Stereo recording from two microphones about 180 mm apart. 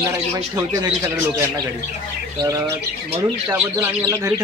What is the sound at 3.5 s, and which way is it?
Speech, 15° right (ahead or behind).